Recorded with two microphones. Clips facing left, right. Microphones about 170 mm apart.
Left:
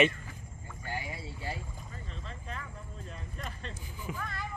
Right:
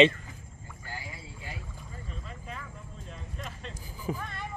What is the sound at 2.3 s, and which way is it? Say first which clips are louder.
Vehicle: left 2 dB; 5° right (ahead or behind).